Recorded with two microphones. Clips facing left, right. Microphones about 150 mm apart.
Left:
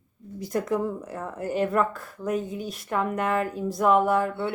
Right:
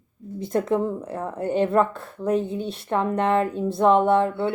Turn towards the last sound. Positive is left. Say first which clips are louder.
# right 4 dB
turn(degrees=-25)  # may be behind; listen again after turning